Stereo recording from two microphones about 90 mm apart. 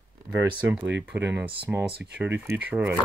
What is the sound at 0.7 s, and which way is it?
Speech, 15° right (ahead or behind).